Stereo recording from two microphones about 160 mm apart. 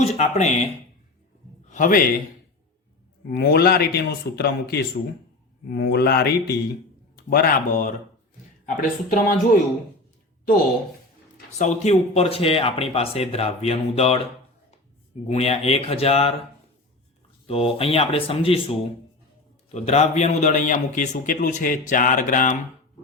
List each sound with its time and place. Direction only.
0.0 s a man's voice: 45° left (ahead or behind)
1.7 s a man's voice: 55° left (ahead or behind)
3.2 s a man's voice: 90° left
7.3 s speech: 70° left (ahead or behind)
11.5 s speech: 45° left (ahead or behind)
15.3 s speech: 40° left (ahead or behind)
17.5 s a man's voice: 35° left (ahead or behind); by 22.5 s 55° left (ahead or behind)